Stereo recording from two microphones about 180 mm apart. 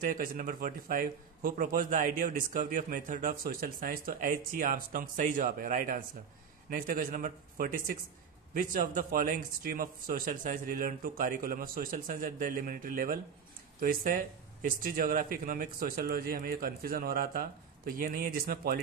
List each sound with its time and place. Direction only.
0.0 s a man's voice: 50° right (ahead or behind)